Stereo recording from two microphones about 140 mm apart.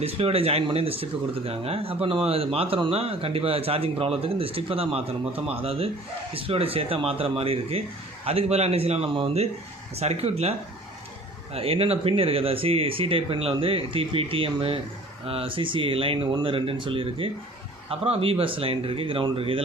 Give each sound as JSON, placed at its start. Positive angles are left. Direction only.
{"t": 0.2, "sound": "speech", "side_deg": -45}
{"t": 11.5, "sound": "speech", "side_deg": -45}